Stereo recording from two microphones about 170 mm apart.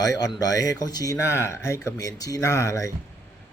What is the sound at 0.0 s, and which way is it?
Speech, 20° left (ahead or behind).